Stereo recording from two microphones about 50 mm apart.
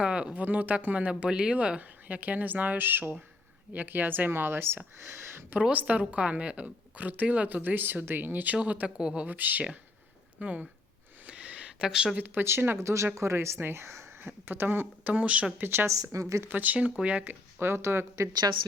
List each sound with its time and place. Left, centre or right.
0.0 s speech: right
0.3 s a woman's voice: right
5.7 s a woman's voice: right
9.0 s speech: centre
9.2 s a woman's voice: right
11.3 s a sound: right
12.1 s speech: right
12.8 s speech: right
14.2 s speech: right
15.0 s speech: right
15.5 s speech: right
16.1 s speech: right
16.5 s a woman's voice: right
17.6 s speech: right